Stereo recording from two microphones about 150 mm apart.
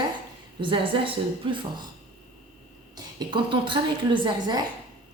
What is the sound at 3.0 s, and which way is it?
A woman's voice, 30° right (ahead or behind).